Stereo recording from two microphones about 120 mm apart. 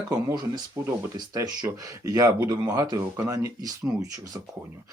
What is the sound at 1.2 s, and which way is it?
Speech, 35° right (ahead or behind).